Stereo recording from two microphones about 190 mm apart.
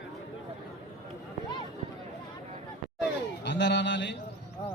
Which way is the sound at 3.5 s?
65° left (ahead or behind).